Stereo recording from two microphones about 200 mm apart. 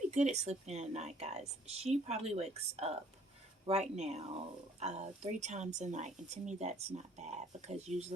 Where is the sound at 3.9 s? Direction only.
30° right (ahead or behind).